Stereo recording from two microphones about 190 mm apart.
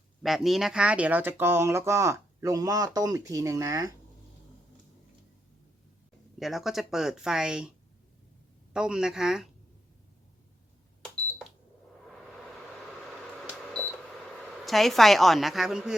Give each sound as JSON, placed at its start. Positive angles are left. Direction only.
{"t": 0.2, "sound": "speech", "side_deg": 0}
{"t": 6.4, "sound": "speech", "side_deg": 0}
{"t": 8.7, "sound": "speech", "side_deg": -5}
{"t": 14.3, "sound": "a woman's voice", "side_deg": 0}